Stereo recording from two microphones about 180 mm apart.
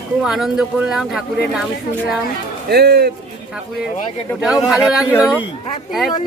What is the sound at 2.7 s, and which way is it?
Speech, 60° right (ahead or behind).